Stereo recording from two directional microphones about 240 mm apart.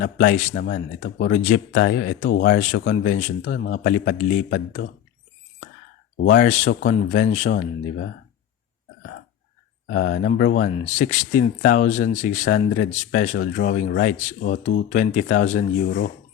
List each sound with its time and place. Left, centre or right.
0.0 s speech: left
1.3 s speech: left
6.2 s speech: left
9.8 s speech: left
10.2 s speech: left
13.3 s speech: left